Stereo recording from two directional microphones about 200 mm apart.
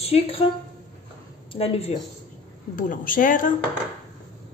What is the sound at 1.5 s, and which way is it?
Dishes, 30° left (ahead or behind).